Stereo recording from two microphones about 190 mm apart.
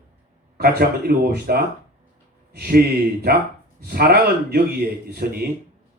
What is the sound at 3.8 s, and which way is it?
Speech, 50° right (ahead or behind).